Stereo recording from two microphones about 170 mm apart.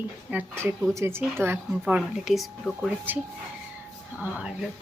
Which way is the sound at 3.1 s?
10° right (ahead or behind).